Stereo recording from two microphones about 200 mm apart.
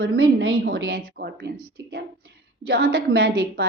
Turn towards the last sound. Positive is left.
turn(degrees=-50)  # may be behind; listen again after turning